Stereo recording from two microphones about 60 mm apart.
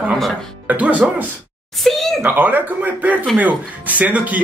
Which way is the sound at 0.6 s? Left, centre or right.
Right.